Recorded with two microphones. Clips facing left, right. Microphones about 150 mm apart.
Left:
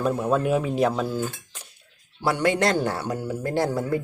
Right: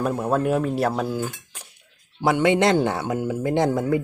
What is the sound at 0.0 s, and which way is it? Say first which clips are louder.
Speech: right 1 dB; 10° right (ahead or behind).